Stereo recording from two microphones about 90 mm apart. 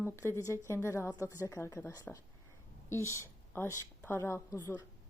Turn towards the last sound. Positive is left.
turn(degrees=30)  # may be behind; listen again after turning